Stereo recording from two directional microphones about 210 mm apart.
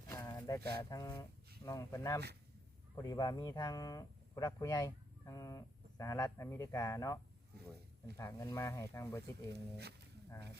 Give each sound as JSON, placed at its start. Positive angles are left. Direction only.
{"t": 0.1, "sound": "a sound", "side_deg": 15}
{"t": 0.8, "sound": "speech", "side_deg": 15}
{"t": 9.5, "sound": "speech", "side_deg": -50}